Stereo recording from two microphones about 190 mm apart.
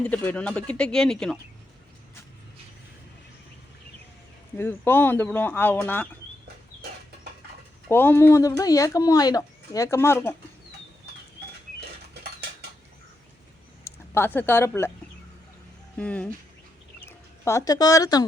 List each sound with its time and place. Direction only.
0.0 s speech: 10° left (ahead or behind)
4.5 s speech: 10° left (ahead or behind)
7.9 s speech: 10° left (ahead or behind)
13.8 s speech: 10° left (ahead or behind)
16.0 s speech: 5° left (ahead or behind)